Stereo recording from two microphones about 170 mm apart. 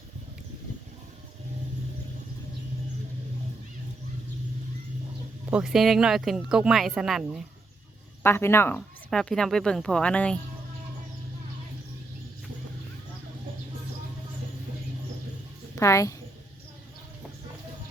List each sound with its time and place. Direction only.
5.5 s speech: 5° right (ahead or behind)
8.2 s speech: 15° left (ahead or behind)
9.0 s speech: 5° left (ahead or behind)
15.7 s a woman's voice: 15° left (ahead or behind)